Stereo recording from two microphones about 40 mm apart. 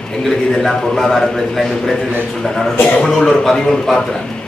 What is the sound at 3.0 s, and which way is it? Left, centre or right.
A man's voice, centre.